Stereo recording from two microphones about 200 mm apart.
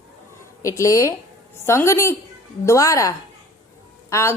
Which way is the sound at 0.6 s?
15° left (ahead or behind).